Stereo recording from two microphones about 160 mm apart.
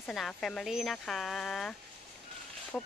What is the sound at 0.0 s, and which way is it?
Speech, centre (ahead or behind).